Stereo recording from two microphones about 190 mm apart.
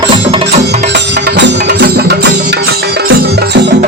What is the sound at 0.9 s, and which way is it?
Music, 65° right (ahead or behind).